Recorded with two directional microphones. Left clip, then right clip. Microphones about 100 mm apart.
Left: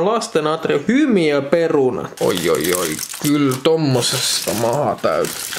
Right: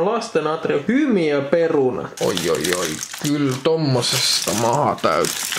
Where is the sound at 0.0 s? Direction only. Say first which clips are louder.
Left 2 dB; 15° left (ahead or behind).